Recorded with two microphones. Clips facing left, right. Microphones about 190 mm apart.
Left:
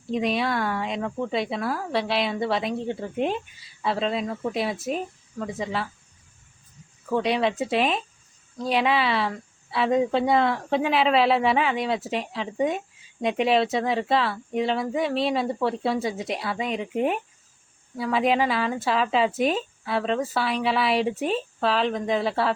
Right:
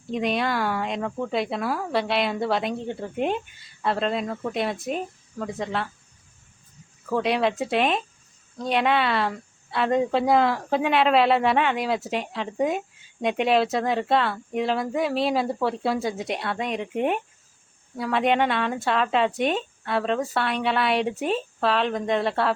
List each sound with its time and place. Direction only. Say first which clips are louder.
0.1 s a woman's voice: even; centre (ahead or behind)
7.1 s a woman's voice: even; centre (ahead or behind)